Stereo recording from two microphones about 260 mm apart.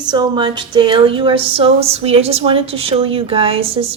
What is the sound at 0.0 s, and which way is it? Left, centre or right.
A woman's voice, centre.